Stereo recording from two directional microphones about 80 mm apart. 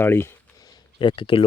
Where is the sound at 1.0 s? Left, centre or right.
Left.